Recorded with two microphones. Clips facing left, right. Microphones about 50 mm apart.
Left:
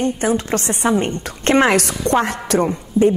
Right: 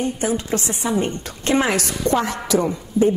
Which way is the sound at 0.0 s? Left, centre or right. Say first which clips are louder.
Left 4 dB; left.